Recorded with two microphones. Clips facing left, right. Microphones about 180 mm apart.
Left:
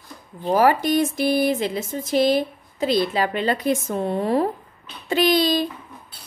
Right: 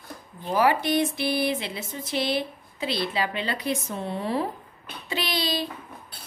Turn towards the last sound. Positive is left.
turn(degrees=45)  # may be behind; listen again after turning